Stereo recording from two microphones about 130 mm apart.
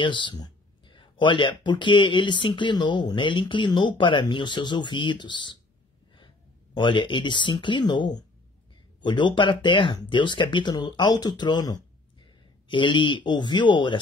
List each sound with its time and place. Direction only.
0.0 s speech: 35° left (ahead or behind)